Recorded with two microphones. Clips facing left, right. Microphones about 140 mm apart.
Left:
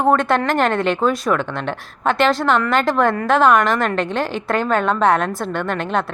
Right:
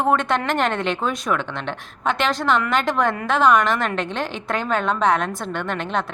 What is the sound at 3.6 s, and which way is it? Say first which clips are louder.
A woman's voice: left 3 dB; 45° left (ahead or behind).